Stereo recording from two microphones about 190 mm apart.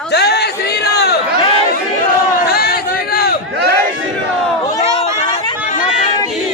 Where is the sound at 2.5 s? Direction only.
55° left (ahead or behind).